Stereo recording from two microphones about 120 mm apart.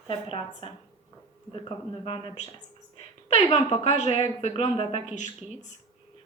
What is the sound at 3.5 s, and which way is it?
A woman's voice, 70° left (ahead or behind).